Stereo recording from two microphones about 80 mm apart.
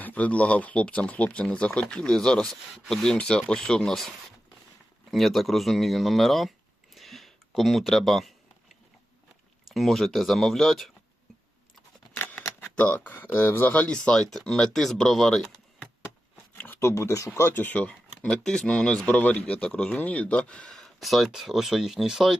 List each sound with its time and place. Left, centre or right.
0.0 s speech: centre
5.1 s speech: centre
6.9 s a sound: centre
9.6 s speech: centre
12.1 s speech: left; by 15.9 s centre
16.8 s speech: left; by 19.0 s centre
19.0 s speech: centre
20.7 s speech: centre